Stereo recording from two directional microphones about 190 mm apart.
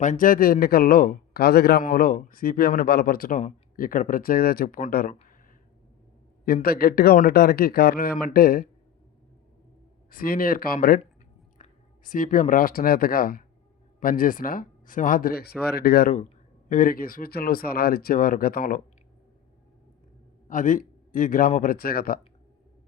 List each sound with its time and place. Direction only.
0.0 s a man's voice: 45° left (ahead or behind)
6.4 s a man's voice: 50° left (ahead or behind)
10.1 s a man's voice: 50° left (ahead or behind)
20.5 s a man's voice: 45° left (ahead or behind)